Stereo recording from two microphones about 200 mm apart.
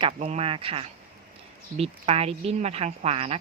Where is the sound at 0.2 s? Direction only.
30° right (ahead or behind).